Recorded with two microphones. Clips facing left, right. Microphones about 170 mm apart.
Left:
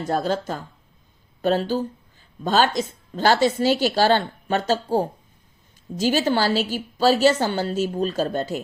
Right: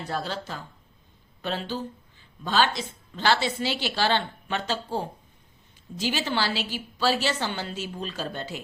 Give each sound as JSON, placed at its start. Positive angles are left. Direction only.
{"t": 0.0, "sound": "a woman's voice", "side_deg": 45}